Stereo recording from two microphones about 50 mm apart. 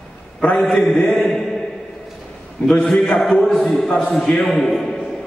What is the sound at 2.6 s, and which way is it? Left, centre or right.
Speech, left.